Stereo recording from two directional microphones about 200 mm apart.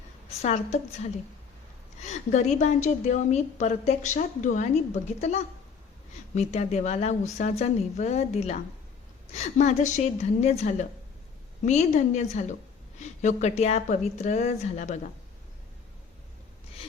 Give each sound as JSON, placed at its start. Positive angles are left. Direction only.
{"t": 0.4, "sound": "a woman's voice", "side_deg": 35}
{"t": 2.0, "sound": "a woman's voice", "side_deg": 35}